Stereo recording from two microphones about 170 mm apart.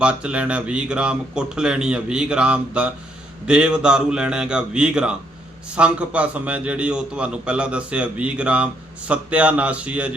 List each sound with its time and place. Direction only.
0.0 s a man's voice: 5° right (ahead or behind)